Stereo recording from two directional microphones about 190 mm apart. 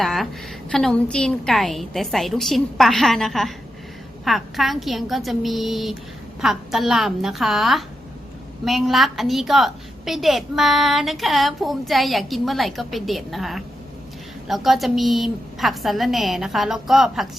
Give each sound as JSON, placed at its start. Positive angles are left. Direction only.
{"t": 0.0, "sound": "a woman's voice", "side_deg": 0}